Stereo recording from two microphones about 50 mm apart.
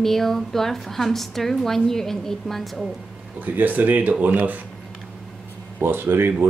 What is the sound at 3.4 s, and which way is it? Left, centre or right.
Speech, right.